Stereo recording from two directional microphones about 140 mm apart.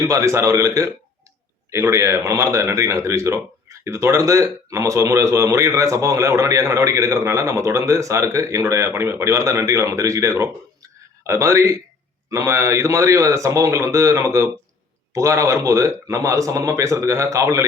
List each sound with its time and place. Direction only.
0.0 s speech: 20° right (ahead or behind)